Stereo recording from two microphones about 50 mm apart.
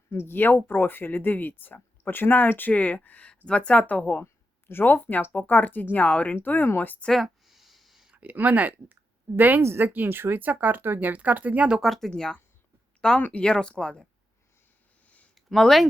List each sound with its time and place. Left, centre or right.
0.1 s speech: left
4.7 s speech: left
7.1 s a sound: centre
8.1 s speech: right
9.6 s a woman's voice: right
9.8 s speech: right
11.1 s speech: right
11.8 s speech: centre
12.1 s speech: centre
15.4 s a sound: centre